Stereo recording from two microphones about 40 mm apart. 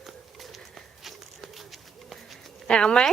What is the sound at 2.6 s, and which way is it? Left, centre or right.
Speech, left.